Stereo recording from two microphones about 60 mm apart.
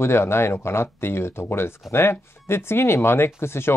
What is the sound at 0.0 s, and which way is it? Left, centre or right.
Speech, left.